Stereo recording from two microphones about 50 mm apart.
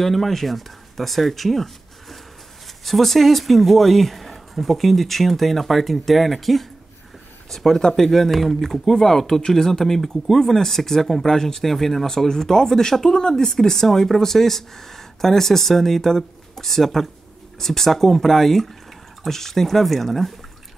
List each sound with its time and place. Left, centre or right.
0.0 s speech: centre